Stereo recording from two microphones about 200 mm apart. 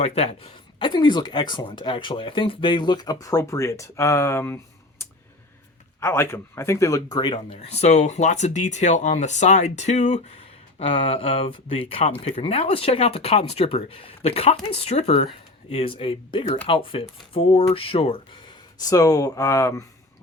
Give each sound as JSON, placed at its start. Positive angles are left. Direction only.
{"t": 0.0, "sound": "a man's voice", "side_deg": 30}